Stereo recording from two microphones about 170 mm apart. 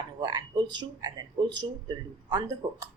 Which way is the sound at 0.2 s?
25° right (ahead or behind).